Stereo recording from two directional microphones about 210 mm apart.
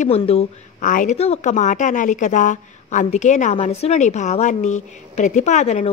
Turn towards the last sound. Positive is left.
turn(degrees=35)  # may be behind; listen again after turning